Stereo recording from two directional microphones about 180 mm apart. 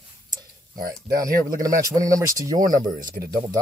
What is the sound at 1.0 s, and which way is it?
Speech, 20° right (ahead or behind).